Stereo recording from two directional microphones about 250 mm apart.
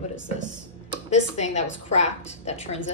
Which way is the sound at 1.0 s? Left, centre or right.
Left.